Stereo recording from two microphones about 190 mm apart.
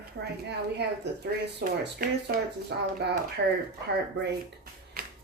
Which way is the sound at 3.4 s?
65° right (ahead or behind).